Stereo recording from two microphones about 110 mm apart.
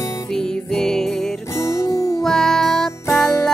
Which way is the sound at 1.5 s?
25° left (ahead or behind).